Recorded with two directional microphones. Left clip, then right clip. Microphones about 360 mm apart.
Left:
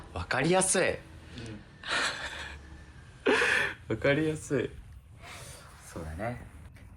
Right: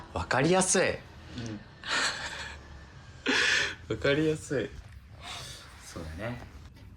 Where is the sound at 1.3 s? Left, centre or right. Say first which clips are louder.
Right 4 dB; centre.